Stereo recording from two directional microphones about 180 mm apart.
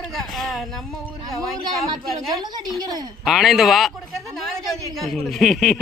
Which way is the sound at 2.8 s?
20° right (ahead or behind).